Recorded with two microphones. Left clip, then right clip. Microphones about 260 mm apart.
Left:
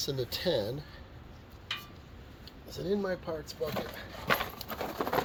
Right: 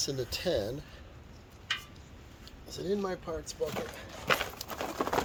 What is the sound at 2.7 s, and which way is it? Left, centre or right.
Speech, right.